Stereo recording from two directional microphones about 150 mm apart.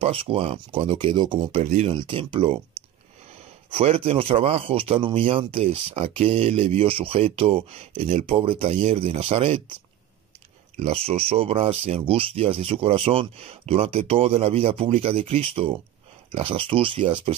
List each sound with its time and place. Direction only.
0.0 s speech: 40° right (ahead or behind)
1.6 s speech: 50° right (ahead or behind)
2.0 s speech: 35° right (ahead or behind)
3.7 s speech: 40° right (ahead or behind)
10.8 s speech: 40° right (ahead or behind)